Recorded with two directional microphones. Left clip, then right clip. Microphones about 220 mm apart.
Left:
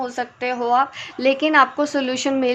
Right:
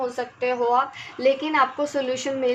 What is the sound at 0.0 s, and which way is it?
A woman's voice, 45° left (ahead or behind).